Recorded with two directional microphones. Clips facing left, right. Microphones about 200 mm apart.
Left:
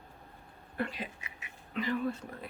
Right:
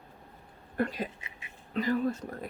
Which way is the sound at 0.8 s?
45° right (ahead or behind).